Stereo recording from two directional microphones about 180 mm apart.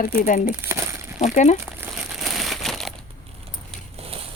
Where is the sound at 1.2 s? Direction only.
40° left (ahead or behind).